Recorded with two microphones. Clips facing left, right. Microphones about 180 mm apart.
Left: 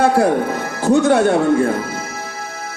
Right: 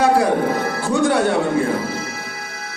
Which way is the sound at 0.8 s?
45° left (ahead or behind).